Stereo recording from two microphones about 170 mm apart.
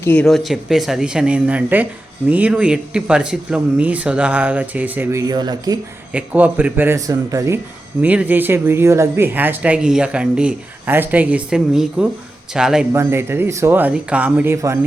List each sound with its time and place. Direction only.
0.0 s speech: 10° left (ahead or behind); by 5.2 s 10° right (ahead or behind)
5.3 s speech: 25° right (ahead or behind)
6.1 s a man's voice: 10° right (ahead or behind)
12.9 s speech: 15° right (ahead or behind)